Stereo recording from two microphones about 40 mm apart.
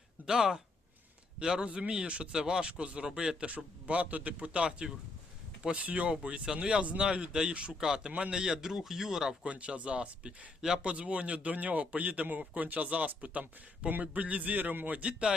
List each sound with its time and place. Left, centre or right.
0.3 s a man's voice: centre
1.6 s a man's voice: right; by 9.3 s centre
9.4 s speech: right